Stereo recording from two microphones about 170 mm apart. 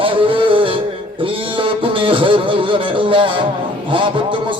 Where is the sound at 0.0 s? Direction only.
30° right (ahead or behind).